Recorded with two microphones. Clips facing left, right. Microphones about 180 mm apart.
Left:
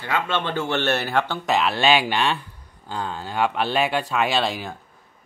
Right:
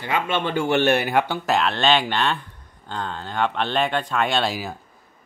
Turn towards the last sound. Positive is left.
turn(degrees=-5)  # may be behind; listen again after turning